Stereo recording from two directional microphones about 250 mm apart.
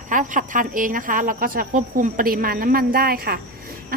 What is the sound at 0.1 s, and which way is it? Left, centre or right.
Speech, right.